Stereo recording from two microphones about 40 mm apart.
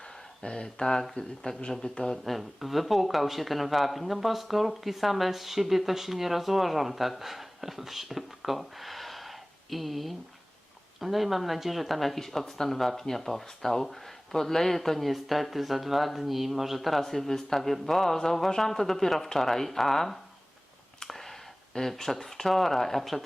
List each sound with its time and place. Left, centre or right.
0.4 s speech: left
2.2 s speech: centre
21.0 s a sound: centre
21.8 s speech: centre